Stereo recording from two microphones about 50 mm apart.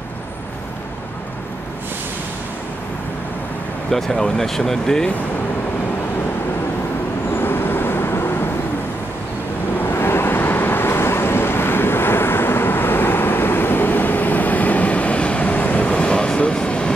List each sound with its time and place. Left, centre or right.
3.9 s speech: centre
7.3 s vehicle: left
9.8 s vehicle: left; by 16.9 s centre